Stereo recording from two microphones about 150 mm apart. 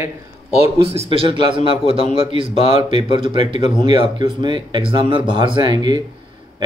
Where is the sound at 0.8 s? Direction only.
40° right (ahead or behind).